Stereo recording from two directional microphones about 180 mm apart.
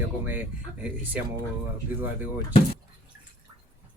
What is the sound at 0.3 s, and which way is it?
Speech, 10° right (ahead or behind).